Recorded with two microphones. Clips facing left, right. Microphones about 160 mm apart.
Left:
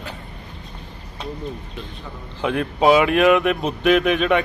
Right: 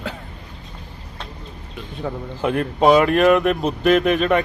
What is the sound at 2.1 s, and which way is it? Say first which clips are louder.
Speech: right 10 dB; 70° right (ahead or behind).